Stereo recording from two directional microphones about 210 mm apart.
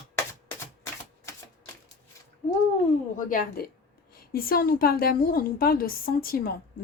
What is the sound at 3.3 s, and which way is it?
A woman's voice, 40° left (ahead or behind).